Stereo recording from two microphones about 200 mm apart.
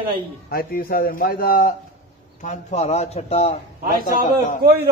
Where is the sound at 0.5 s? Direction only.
50° left (ahead or behind).